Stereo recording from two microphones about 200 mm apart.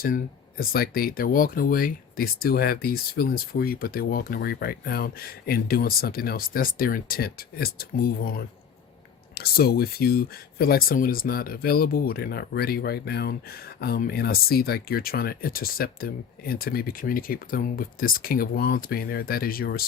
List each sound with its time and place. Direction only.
0.0 s speech: 45° left (ahead or behind)